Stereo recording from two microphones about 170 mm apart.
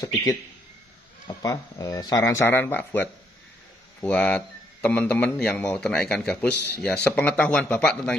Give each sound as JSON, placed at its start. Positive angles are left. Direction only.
{"t": 0.0, "sound": "speech", "side_deg": 20}